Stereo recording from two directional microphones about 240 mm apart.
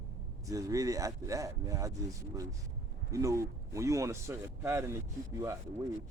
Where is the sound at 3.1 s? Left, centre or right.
Centre.